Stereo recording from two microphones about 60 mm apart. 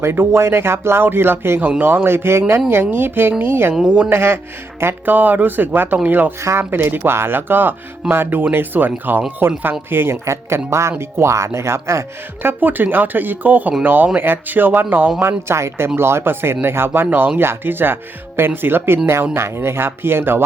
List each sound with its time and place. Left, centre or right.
0.0 s speech: right
3.8 s speech: centre
4.1 s speech: right
10.7 s speech: right
15.2 s speech: right